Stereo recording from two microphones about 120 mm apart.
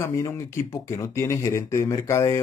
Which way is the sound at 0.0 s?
25° left (ahead or behind).